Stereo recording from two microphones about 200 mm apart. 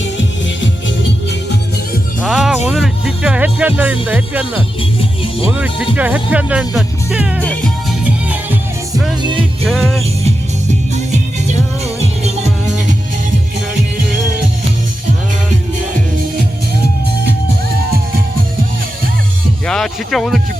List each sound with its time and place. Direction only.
0.0 s music: 65° left (ahead or behind)
2.2 s music: centre (ahead or behind)
4.0 s speech: 10° right (ahead or behind)
4.8 s music: 25° left (ahead or behind)
5.5 s speech: 5° right (ahead or behind)
7.4 s music: 5° left (ahead or behind)
9.6 s music: centre (ahead or behind)
19.6 s speech: centre (ahead or behind)